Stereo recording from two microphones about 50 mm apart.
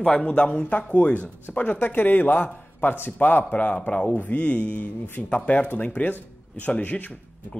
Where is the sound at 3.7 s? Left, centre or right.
Left.